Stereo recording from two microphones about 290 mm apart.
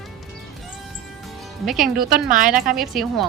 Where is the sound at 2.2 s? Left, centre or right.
Right.